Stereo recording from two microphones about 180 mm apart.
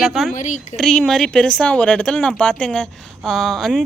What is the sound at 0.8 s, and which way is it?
Speech, 5° left (ahead or behind).